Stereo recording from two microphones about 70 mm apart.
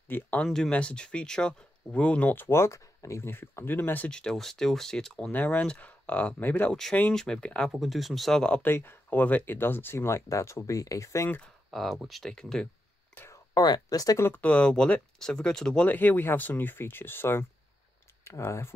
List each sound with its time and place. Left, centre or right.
0.1 s speech: left
2.3 s speech: left
3.3 s speech: left
4.1 s speech: centre
5.3 s speech: left
6.7 s speech: centre
7.7 s speech: centre
8.6 s speech: left
11.2 s speech: left
11.7 s speech: centre
13.6 s speech: left
14.3 s speech: centre
15.8 s speech: left